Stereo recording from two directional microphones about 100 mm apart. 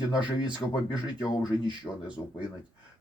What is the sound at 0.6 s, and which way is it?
Speech, 45° left (ahead or behind).